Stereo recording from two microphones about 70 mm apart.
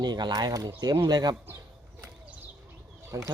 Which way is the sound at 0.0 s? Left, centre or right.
Right.